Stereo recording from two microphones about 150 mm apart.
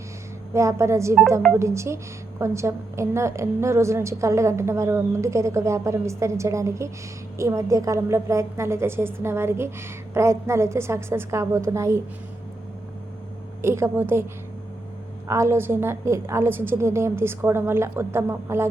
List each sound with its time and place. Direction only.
0.5 s a woman's voice: 20° right (ahead or behind)
13.6 s a woman's voice: 15° right (ahead or behind)
15.3 s a woman's voice: 20° right (ahead or behind)